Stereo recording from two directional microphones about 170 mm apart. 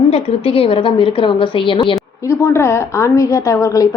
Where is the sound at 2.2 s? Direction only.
15° left (ahead or behind).